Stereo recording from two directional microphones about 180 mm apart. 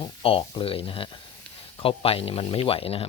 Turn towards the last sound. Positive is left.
turn(degrees=30)  # may be behind; listen again after turning